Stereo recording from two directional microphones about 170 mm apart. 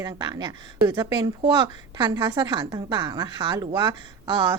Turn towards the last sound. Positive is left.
turn(degrees=-30)  # may be behind; listen again after turning